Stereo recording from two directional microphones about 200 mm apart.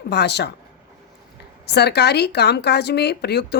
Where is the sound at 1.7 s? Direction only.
55° left (ahead or behind).